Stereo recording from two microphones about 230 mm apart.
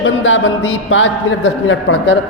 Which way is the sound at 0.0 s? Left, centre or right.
Left.